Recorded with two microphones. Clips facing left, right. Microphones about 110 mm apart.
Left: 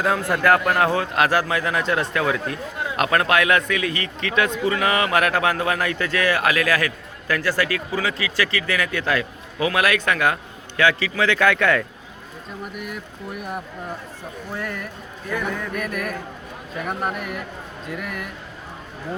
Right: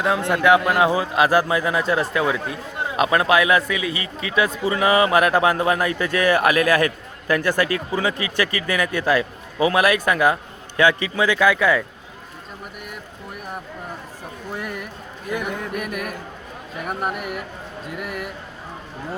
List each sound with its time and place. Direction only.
0.3 s a man's voice: centre (ahead or behind)
4.6 s speech: 25° right (ahead or behind)
9.8 s a man's voice: 15° right (ahead or behind)
14.5 s a man's voice: 10° right (ahead or behind)